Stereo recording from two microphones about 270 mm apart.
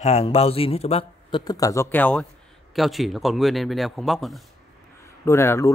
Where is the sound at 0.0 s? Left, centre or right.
Left.